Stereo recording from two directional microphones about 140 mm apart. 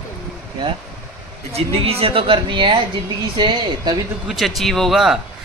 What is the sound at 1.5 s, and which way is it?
Speech, 45° right (ahead or behind).